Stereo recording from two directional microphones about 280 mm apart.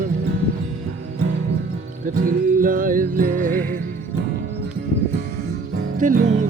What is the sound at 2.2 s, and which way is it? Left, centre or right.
Music, right.